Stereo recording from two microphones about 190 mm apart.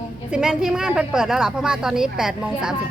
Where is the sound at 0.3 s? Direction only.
5° right (ahead or behind).